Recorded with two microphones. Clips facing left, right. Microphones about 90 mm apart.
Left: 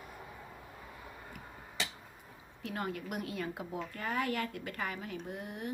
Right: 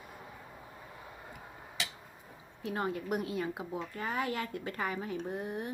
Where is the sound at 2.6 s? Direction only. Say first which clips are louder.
Right 4 dB; 25° right (ahead or behind).